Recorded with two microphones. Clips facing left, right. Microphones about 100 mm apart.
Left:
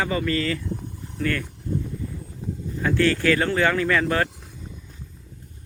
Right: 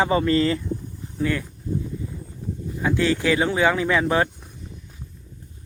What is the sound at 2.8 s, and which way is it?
Speech, 15° right (ahead or behind).